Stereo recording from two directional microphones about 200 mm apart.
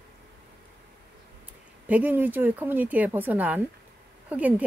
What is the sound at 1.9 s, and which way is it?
Speech, 10° right (ahead or behind).